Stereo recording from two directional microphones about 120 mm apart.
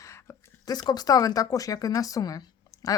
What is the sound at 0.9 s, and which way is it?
Speech, 35° left (ahead or behind).